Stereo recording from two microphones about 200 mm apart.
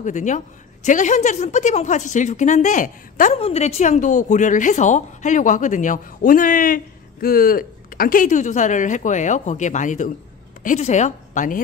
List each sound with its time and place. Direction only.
0.0 s a woman's voice: 40° left (ahead or behind)